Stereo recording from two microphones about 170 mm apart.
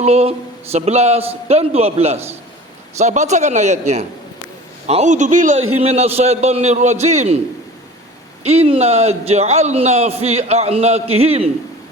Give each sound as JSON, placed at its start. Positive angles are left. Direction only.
{"t": 0.0, "sound": "a man's voice", "side_deg": -35}
{"t": 8.4, "sound": "a man's voice", "side_deg": -35}